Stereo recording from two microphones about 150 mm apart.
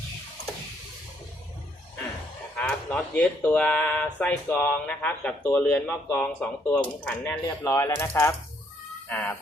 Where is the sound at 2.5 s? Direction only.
5° left (ahead or behind).